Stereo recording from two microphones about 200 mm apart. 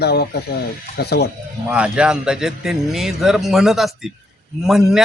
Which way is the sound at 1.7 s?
5° right (ahead or behind).